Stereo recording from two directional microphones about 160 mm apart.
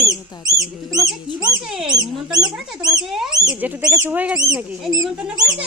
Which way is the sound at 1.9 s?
25° right (ahead or behind).